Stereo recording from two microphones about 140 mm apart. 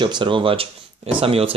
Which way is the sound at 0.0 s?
35° right (ahead or behind).